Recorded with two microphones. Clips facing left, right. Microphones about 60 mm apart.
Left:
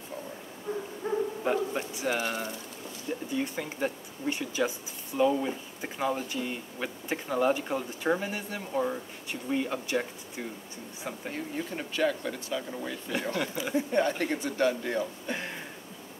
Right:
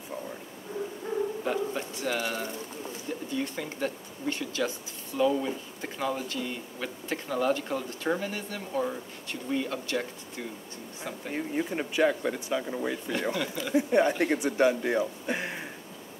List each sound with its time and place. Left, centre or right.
1.0 s dog: centre
3.3 s speech: centre
11.3 s speech: centre
13.4 s speech: centre
13.7 s speech: centre